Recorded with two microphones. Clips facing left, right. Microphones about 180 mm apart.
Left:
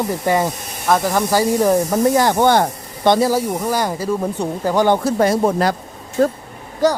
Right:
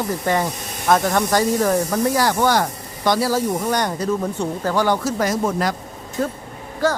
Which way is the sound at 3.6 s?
5° left (ahead or behind).